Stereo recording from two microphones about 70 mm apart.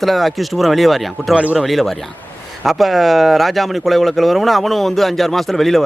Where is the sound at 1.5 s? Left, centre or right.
Centre.